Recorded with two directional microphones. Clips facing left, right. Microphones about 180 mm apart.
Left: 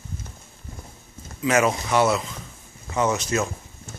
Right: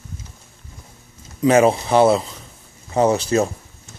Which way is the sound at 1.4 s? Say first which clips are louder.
Right 7 dB; 30° right (ahead or behind).